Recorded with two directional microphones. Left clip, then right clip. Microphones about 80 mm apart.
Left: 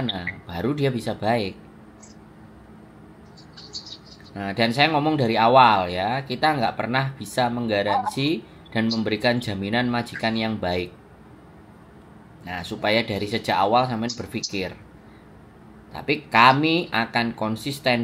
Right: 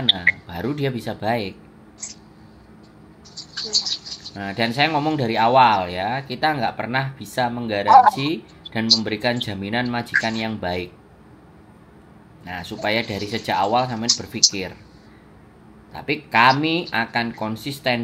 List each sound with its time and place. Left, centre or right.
0.0 s a sound: right
0.5 s speech: centre
3.3 s a sound: right
4.4 s speech: centre
12.4 s speech: centre
15.9 s speech: centre